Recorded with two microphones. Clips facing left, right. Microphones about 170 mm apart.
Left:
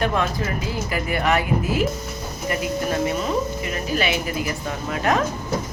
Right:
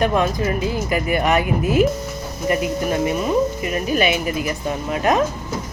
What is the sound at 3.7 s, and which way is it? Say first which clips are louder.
Speech: right 2 dB; 20° right (ahead or behind).